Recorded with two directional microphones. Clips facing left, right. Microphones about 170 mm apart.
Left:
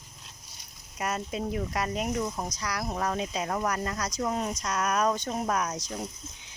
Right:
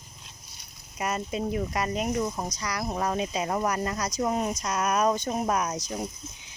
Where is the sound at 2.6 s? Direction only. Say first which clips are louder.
Right 2 dB; centre (ahead or behind).